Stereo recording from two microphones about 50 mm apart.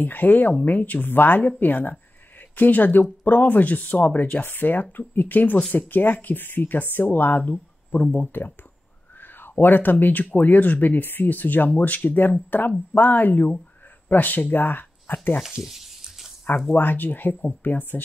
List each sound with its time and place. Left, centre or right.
0.0 s speech: left
15.4 s speech: centre
16.7 s speech: left